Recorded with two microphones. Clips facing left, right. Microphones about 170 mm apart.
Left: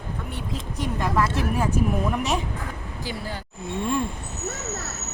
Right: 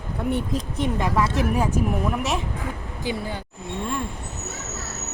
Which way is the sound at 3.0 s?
20° right (ahead or behind).